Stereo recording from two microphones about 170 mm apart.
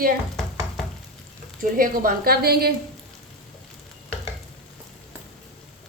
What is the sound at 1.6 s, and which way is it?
Speech, 55° right (ahead or behind).